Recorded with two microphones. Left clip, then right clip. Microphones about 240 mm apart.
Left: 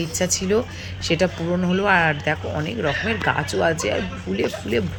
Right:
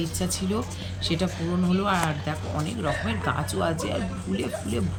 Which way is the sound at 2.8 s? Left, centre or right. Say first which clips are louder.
Left 7 dB; centre.